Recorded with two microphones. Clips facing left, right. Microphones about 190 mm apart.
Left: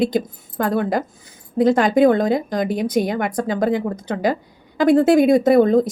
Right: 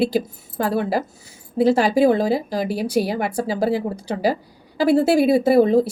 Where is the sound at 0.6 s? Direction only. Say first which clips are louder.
Left 1 dB; 30° right (ahead or behind).